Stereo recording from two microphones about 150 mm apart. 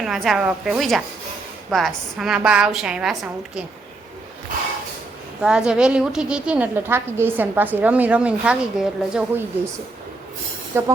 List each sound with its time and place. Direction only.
0.0 s a woman's voice: centre (ahead or behind)
5.4 s a woman's voice: 5° right (ahead or behind)
10.7 s a woman's voice: 15° right (ahead or behind)